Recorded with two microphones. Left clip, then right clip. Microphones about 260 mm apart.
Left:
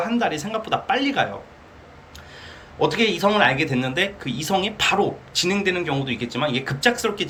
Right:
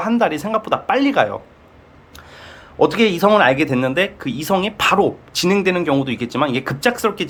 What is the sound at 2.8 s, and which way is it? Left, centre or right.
Speech, right.